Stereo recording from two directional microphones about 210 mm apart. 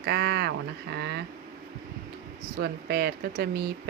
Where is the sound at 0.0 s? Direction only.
50° right (ahead or behind).